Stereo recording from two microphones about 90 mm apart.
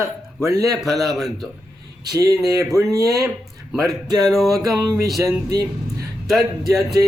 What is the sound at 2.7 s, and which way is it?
Speech, 40° right (ahead or behind).